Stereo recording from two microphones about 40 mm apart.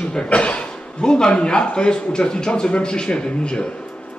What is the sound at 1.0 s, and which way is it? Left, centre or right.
A man's voice, centre.